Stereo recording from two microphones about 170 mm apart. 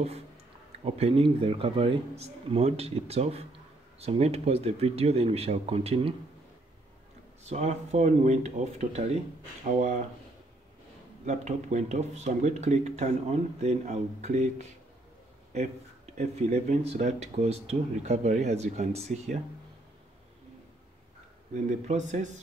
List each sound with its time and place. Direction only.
0.8 s speech: 35° right (ahead or behind)
7.4 s speech: 40° right (ahead or behind)
11.2 s speech: 45° right (ahead or behind)
16.2 s speech: 40° right (ahead or behind)
21.6 s speech: 45° right (ahead or behind)